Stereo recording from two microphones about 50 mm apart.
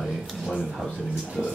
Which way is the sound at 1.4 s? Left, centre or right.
Centre.